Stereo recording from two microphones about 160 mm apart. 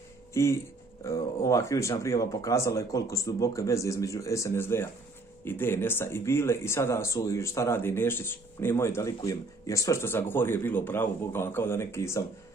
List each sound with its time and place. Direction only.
0.3 s speech: 15° left (ahead or behind)